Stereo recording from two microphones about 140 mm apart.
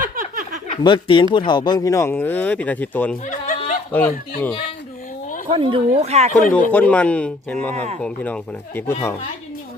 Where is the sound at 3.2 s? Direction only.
65° left (ahead or behind).